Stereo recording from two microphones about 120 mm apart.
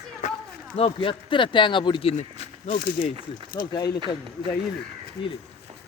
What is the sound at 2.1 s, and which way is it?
Speech, 75° left (ahead or behind).